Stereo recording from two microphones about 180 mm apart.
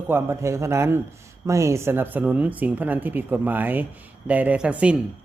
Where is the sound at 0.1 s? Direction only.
15° right (ahead or behind).